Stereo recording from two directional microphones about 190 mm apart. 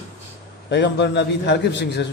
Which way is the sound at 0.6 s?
65° left (ahead or behind).